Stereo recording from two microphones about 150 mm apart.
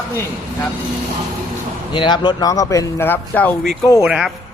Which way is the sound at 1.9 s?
30° left (ahead or behind).